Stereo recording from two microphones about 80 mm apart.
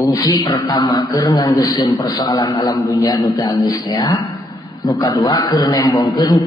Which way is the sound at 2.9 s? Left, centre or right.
Left.